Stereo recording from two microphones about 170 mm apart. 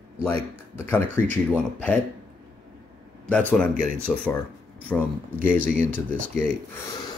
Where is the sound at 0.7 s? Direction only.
10° left (ahead or behind).